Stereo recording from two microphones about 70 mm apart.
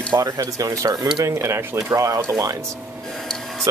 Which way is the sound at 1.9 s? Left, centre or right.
Right.